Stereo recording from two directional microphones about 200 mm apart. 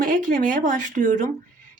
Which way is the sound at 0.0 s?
45° right (ahead or behind).